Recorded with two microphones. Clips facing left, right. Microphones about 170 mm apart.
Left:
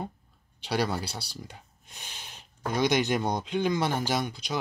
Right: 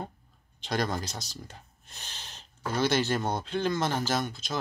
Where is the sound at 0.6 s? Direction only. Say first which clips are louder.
Left 2 dB; 10° left (ahead or behind).